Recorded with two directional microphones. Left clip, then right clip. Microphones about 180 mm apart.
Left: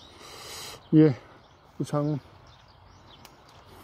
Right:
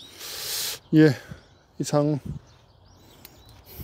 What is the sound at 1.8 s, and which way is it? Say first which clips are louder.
Speech: right 6 dB; 20° right (ahead or behind).